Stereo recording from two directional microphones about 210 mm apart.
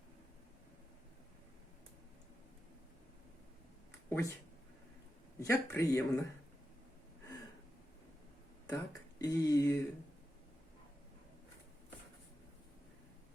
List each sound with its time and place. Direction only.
4.1 s speech: 15° left (ahead or behind)
5.4 s speech: 15° left (ahead or behind)
8.7 s speech: 15° left (ahead or behind)